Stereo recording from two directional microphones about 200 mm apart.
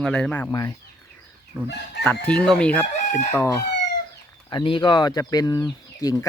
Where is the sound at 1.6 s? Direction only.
55° left (ahead or behind).